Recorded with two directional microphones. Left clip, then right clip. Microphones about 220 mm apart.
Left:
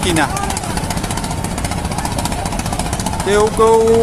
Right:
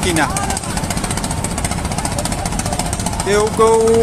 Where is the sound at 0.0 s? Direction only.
Centre (ahead or behind).